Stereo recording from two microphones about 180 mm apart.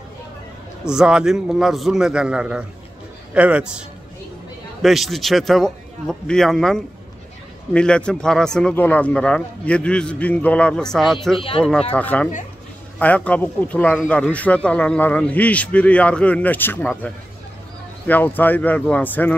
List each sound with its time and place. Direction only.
0.8 s a man's voice: 5° right (ahead or behind)
4.8 s speech: centre (ahead or behind)
11.3 s speech: 30° left (ahead or behind)
11.9 s speech: 10° left (ahead or behind)